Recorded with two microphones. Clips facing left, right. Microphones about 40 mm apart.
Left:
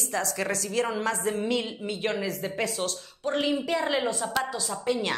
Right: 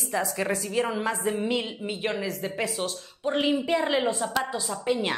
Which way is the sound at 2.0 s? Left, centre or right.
Centre.